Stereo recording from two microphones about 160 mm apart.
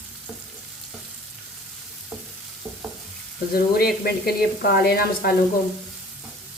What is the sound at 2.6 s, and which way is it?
Stir, 10° right (ahead or behind).